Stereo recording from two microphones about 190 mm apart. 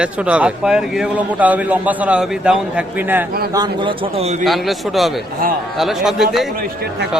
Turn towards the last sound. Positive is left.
turn(degrees=0)  # may be behind; listen again after turning